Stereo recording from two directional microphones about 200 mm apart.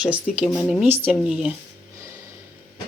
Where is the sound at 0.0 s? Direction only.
5° right (ahead or behind).